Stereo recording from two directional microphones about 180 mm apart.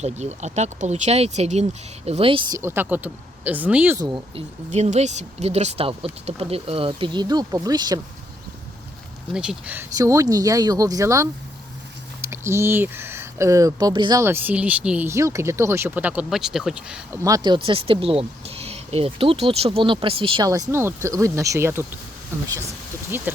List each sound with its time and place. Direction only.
0.0 s speech: 40° right (ahead or behind)
2.6 s speech: 15° right (ahead or behind)
4.0 s speech: 25° right (ahead or behind)
4.7 s speech: 40° right (ahead or behind); by 7.9 s 20° right (ahead or behind)
9.3 s speech: 5° right (ahead or behind)
9.9 s speech: 20° right (ahead or behind)
17.2 s speech: 20° right (ahead or behind)
20.5 s speech: 15° right (ahead or behind)
23.1 s speech: 10° right (ahead or behind)